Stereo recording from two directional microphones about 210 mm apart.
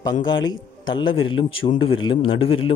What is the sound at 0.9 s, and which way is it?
Speech, 20° left (ahead or behind).